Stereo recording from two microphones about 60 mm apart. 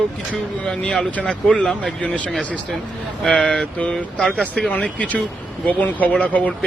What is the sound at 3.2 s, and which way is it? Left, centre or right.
Speech, centre.